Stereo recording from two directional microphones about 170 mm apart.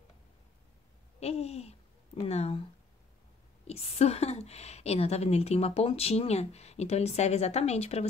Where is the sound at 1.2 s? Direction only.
40° left (ahead or behind).